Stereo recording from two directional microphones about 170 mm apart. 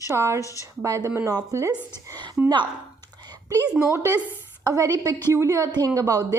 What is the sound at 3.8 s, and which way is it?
A woman's voice, 15° right (ahead or behind).